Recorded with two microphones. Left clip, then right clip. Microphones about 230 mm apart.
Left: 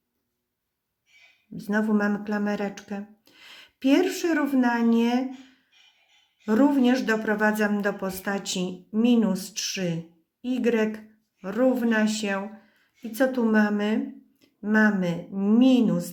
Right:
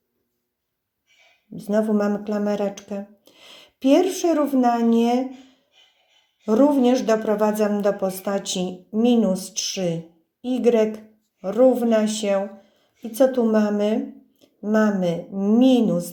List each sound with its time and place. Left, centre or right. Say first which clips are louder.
1.5 s speech: right 5 dB; centre
6.5 s speech: right 4 dB; centre
9.7 s speech: right 7 dB; left
10.4 s speech: right 6 dB; centre